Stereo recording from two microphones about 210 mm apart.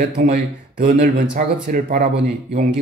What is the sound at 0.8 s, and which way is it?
Speech, 45° right (ahead or behind).